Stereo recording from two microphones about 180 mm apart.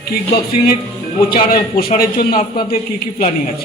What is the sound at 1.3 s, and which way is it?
A man's voice, 55° left (ahead or behind).